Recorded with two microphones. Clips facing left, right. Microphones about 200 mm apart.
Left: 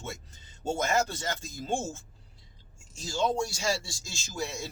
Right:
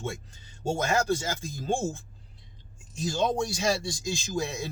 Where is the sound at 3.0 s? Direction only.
15° right (ahead or behind).